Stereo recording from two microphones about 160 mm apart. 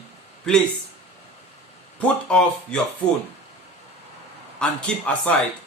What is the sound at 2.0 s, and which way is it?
Speech, 5° left (ahead or behind).